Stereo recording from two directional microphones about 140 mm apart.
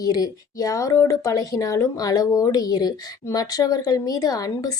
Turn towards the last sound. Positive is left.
turn(degrees=25)  # may be behind; listen again after turning